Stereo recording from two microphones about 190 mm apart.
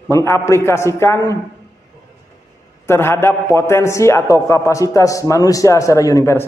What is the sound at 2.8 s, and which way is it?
A man's voice, 15° left (ahead or behind).